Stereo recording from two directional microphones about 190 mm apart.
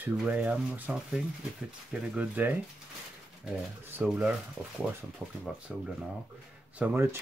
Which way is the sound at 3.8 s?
5° right (ahead or behind).